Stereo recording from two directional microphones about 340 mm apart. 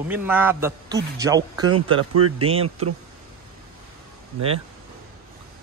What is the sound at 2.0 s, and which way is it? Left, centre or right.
Speech, right.